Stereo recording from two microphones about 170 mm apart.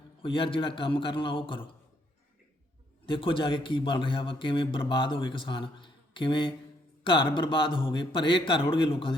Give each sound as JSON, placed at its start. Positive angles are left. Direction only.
{"t": 0.2, "sound": "a man's voice", "side_deg": 30}
{"t": 3.1, "sound": "a man's voice", "side_deg": 30}